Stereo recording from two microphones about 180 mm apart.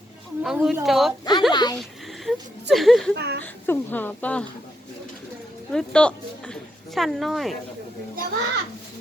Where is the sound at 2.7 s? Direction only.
Centre (ahead or behind).